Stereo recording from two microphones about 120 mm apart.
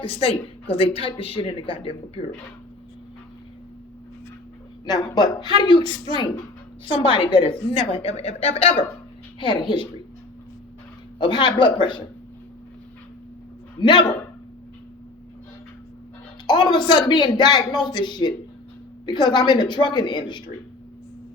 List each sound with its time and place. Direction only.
0.0 s a woman's voice: 50° left (ahead or behind)
4.9 s a woman's voice: 35° left (ahead or behind)
11.2 s a woman's voice: 40° left (ahead or behind)
13.7 s speech: 40° left (ahead or behind)
16.5 s speech: 40° left (ahead or behind)